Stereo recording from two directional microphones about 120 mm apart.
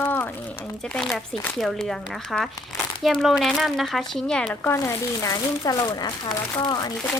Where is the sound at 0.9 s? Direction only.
Centre (ahead or behind).